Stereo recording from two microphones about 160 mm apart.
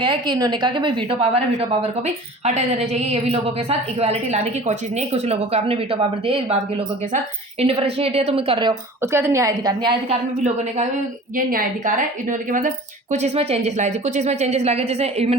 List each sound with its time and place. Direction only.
0.0 s a woman's voice: 35° right (ahead or behind)
2.4 s a woman's voice: 45° right (ahead or behind)
7.6 s a woman's voice: 35° right (ahead or behind)
9.0 s a woman's voice: 15° right (ahead or behind)
10.1 s a woman's voice: 45° right (ahead or behind)
11.3 s a woman's voice: 60° right (ahead or behind); by 15.4 s 40° right (ahead or behind)